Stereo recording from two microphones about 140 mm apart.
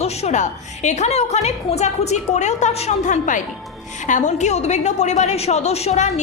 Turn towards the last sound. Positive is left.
turn(degrees=55)  # may be behind; listen again after turning